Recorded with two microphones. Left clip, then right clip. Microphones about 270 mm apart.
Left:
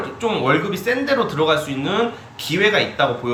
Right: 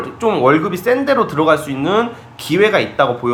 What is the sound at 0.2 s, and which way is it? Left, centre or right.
Speech, centre.